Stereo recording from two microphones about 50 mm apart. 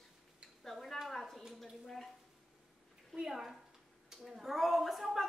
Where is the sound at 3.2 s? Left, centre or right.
Centre.